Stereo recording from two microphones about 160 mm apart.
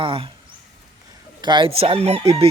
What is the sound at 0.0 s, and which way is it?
Crowing, 35° right (ahead or behind).